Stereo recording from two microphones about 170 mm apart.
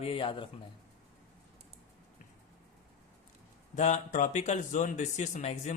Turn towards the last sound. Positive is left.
turn(degrees=40)  # may be behind; listen again after turning